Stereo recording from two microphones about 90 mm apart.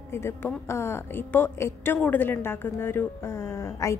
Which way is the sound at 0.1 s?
25° left (ahead or behind).